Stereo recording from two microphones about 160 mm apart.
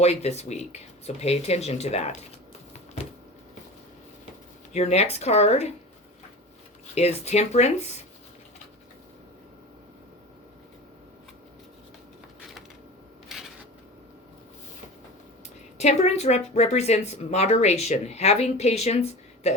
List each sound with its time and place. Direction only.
0.0 s speech: 40° left (ahead or behind)
4.7 s speech: 40° left (ahead or behind)
6.9 s speech: 40° left (ahead or behind)
13.2 s shuffling cards: centre (ahead or behind)
15.8 s speech: 45° left (ahead or behind)